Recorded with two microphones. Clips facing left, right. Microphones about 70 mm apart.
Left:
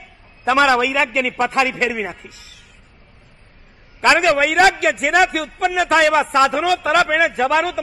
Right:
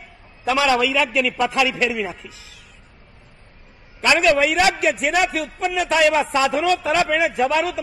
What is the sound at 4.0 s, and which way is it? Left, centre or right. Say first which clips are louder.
A man's voice: left 2 dB; left.